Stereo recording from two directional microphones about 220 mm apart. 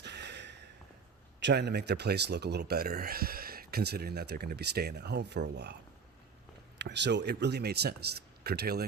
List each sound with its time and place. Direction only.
0.0 s a sound: 50° right (ahead or behind)
1.4 s speech: 50° right (ahead or behind)
6.7 s speech: 50° right (ahead or behind)